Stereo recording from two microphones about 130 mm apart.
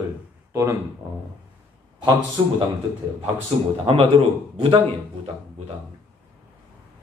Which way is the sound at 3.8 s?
45° right (ahead or behind).